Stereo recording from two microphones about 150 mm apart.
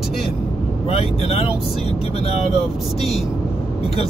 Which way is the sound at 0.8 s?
40° left (ahead or behind).